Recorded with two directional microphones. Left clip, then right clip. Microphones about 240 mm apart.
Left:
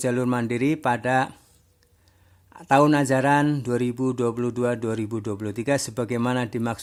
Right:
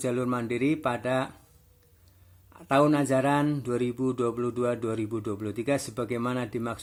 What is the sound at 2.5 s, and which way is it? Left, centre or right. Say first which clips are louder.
A man's voice: left 5 dB; left.